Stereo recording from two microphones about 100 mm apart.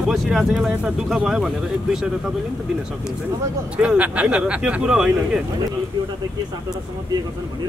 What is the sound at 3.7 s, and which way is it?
Speech, 10° right (ahead or behind).